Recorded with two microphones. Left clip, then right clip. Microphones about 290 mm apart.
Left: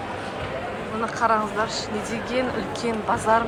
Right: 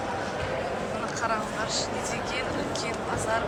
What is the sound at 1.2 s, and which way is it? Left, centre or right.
Speech, centre.